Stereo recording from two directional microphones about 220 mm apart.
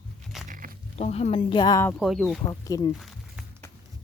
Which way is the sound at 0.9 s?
30° left (ahead or behind).